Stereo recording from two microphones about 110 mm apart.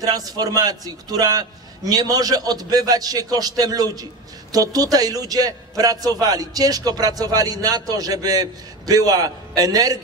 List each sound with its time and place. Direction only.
0.0 s a man's voice: 35° right (ahead or behind)